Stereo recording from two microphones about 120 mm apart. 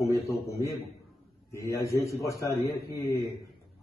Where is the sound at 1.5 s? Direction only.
25° left (ahead or behind).